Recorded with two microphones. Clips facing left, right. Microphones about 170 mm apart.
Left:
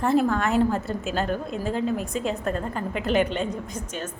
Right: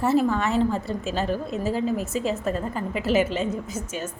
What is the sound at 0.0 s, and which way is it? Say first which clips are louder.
A woman's voice: even; 5° right (ahead or behind).